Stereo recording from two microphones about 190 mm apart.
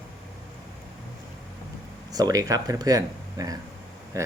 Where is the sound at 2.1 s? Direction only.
20° right (ahead or behind).